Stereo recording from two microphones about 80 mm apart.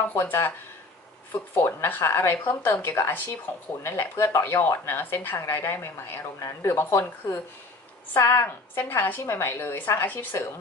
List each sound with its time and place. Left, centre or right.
0.1 s a woman's voice: left
1.6 s a woman's voice: left